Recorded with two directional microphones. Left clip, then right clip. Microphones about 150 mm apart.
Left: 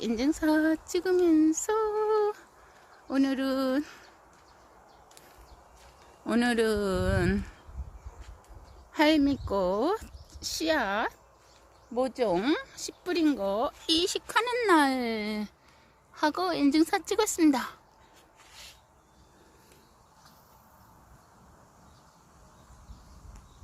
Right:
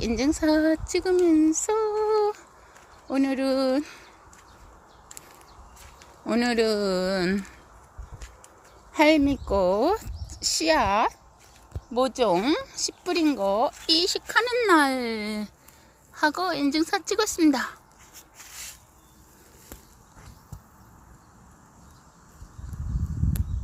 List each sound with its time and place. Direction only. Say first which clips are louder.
0.0 s speech: right 4 dB; 10° right (ahead or behind)
6.2 s speech: right 3 dB; 5° left (ahead or behind)
8.9 s speech: right 4 dB; 5° right (ahead or behind)
10.3 s speech: right 6 dB; 25° right (ahead or behind)
11.9 s speech: right 5 dB; 30° right (ahead or behind)
12.4 s speech: right 4 dB; 10° right (ahead or behind)